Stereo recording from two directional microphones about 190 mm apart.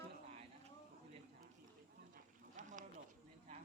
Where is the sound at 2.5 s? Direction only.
40° right (ahead or behind).